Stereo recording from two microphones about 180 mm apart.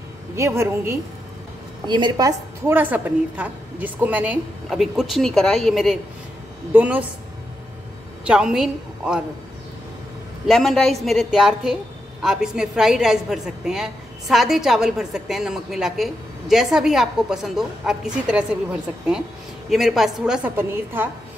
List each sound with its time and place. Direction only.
0.4 s a woman's voice: 15° right (ahead or behind)
2.7 s a woman's voice: 10° right (ahead or behind)
8.3 s a woman's voice: 5° right (ahead or behind)
10.4 s a woman's voice: centre (ahead or behind)
19.7 s a woman's voice: centre (ahead or behind)